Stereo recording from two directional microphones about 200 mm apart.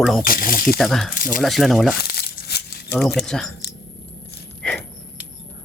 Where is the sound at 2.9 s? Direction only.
Centre (ahead or behind).